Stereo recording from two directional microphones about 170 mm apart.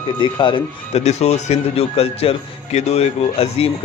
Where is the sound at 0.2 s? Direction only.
25° left (ahead or behind).